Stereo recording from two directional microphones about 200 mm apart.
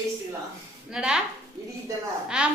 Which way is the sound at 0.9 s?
5° right (ahead or behind).